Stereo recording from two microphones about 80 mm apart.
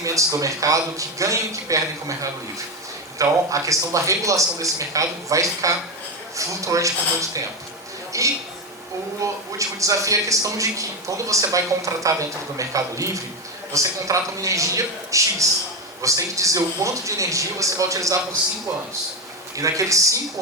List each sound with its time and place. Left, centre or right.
0.0 s a man's voice: right
3.2 s a man's voice: right
19.5 s a man's voice: right